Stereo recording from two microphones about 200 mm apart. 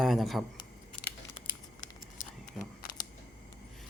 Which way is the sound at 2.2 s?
40° left (ahead or behind).